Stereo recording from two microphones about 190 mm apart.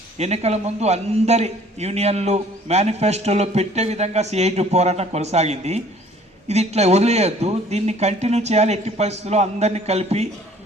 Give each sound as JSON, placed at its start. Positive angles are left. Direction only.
{"t": 0.2, "sound": "a man's voice", "side_deg": -35}